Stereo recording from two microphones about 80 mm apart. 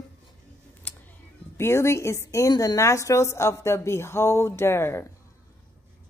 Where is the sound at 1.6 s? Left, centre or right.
Left.